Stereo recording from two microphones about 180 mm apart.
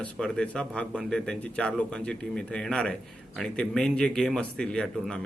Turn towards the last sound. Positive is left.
turn(degrees=5)  # may be behind; listen again after turning